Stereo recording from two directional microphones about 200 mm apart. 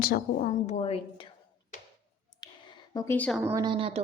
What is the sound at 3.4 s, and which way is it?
Speech, 20° right (ahead or behind).